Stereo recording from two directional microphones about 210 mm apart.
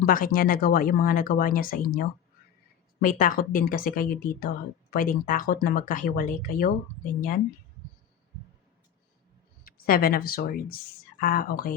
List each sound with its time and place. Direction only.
0.0 s a woman's voice: 40° left (ahead or behind)
9.6 s speech: 45° left (ahead or behind)